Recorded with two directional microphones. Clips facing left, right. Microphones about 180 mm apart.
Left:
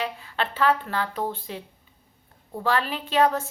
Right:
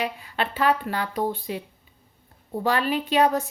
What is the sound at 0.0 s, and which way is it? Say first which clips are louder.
A woman's voice: right 1 dB; 15° right (ahead or behind).